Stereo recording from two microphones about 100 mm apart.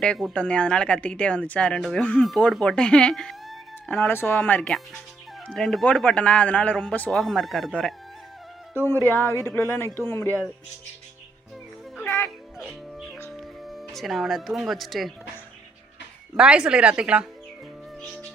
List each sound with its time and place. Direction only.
0.3 s speech: 10° left (ahead or behind)
2.2 s speech: centre (ahead or behind)
4.1 s speech: 20° left (ahead or behind)
7.2 s speech: centre (ahead or behind)
8.9 s speech: 25° left (ahead or behind)
11.9 s music: 25° left (ahead or behind)
12.5 s music: centre (ahead or behind)
13.3 s speech: centre (ahead or behind)
16.4 s a woman's voice: 10° right (ahead or behind)